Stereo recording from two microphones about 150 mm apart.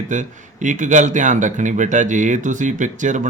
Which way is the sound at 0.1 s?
55° right (ahead or behind).